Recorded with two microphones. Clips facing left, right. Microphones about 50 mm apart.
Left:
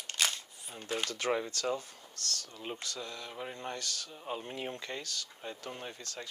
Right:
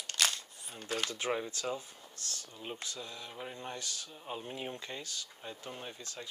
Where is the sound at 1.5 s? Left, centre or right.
Left.